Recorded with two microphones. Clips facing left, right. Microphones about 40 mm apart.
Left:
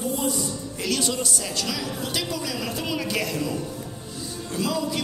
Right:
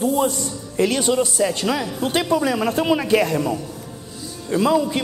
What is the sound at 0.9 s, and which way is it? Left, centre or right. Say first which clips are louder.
A woman's voice: right 6 dB; right.